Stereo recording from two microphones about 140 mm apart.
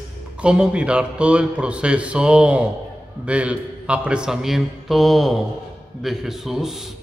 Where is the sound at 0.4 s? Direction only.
5° right (ahead or behind).